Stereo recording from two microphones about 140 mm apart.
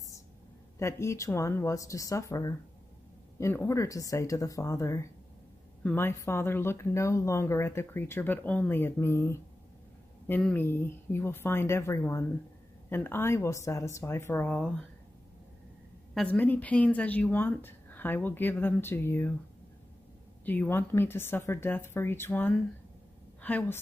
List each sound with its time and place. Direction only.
0.7 s speech: 20° left (ahead or behind)
16.2 s speech: 10° left (ahead or behind)
20.4 s speech: 15° left (ahead or behind)